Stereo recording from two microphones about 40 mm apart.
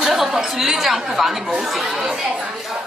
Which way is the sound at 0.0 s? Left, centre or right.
Centre.